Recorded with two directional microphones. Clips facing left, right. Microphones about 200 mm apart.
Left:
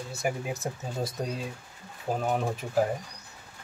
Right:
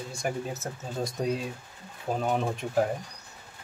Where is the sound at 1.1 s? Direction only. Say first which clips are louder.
Right 4 dB; centre (ahead or behind).